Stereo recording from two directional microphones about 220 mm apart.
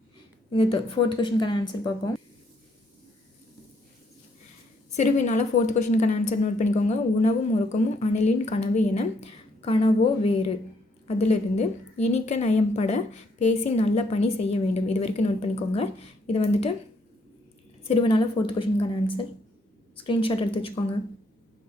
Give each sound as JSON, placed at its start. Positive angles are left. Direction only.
{"t": 0.5, "sound": "a woman's voice", "side_deg": 25}
{"t": 4.9, "sound": "a woman's voice", "side_deg": 30}
{"t": 17.8, "sound": "a woman's voice", "side_deg": 25}